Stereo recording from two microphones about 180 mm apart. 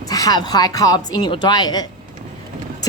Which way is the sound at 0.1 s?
20° left (ahead or behind).